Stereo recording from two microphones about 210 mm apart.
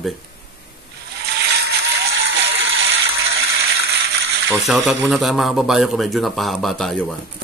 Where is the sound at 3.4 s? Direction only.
50° right (ahead or behind).